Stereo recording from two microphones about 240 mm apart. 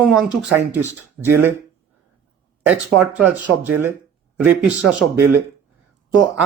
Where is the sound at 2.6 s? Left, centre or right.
Centre.